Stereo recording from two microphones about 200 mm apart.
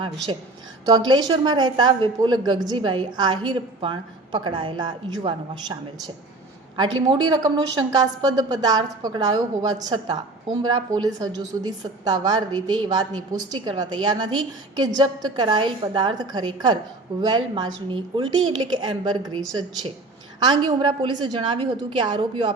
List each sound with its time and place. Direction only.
0.9 s a woman's voice: 20° right (ahead or behind)
6.7 s a woman's voice: 20° right (ahead or behind)
20.4 s a woman's voice: 25° right (ahead or behind)